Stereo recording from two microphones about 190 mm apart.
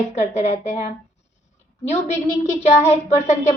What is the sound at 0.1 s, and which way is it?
Speech, 35° left (ahead or behind).